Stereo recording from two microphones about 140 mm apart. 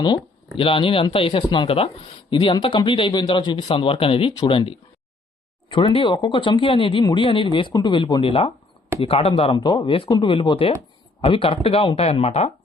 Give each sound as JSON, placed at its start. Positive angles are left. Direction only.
{"t": 0.0, "sound": "speech", "side_deg": 35}
{"t": 9.6, "sound": "speech", "side_deg": 30}